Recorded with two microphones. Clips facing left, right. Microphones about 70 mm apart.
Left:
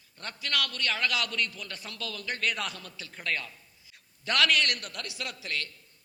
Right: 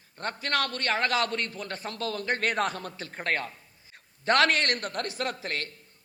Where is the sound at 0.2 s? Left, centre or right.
Right.